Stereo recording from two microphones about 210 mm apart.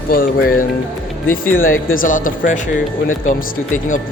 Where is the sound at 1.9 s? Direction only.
40° left (ahead or behind).